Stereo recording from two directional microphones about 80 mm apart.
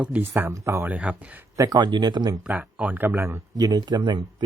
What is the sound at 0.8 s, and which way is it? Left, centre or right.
Speech, centre.